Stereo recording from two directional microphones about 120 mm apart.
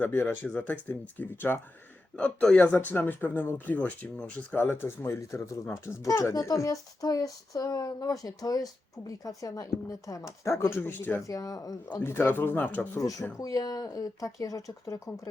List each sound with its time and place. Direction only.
0.0 s speech: 20° left (ahead or behind)
11.3 s speech: 30° left (ahead or behind)
12.0 s speech: 20° left (ahead or behind)
13.0 s speech: 30° left (ahead or behind)